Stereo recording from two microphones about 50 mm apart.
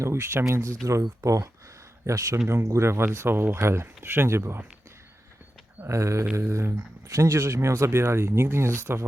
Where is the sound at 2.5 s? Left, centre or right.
Right.